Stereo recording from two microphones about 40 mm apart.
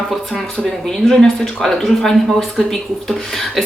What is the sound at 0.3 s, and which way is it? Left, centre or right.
Speech, centre.